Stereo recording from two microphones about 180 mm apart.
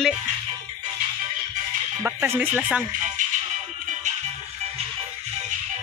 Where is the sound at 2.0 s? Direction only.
10° right (ahead or behind).